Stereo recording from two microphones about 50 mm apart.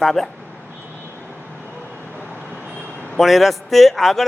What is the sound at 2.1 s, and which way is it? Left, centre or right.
Vehicle, right.